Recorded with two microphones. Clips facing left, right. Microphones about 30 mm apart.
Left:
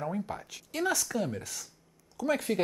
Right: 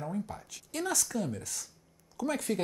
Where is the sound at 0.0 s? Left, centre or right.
Left.